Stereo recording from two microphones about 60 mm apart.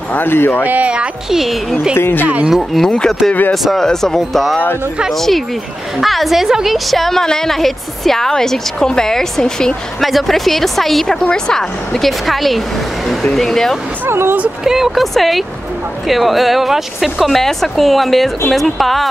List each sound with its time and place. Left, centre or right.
0.1 s speech: left
0.7 s speech: right
0.9 s a woman's voice: centre
2.0 s speech: left
2.8 s a woman's voice: centre
14.0 s speech: right
14.6 s a woman's voice: centre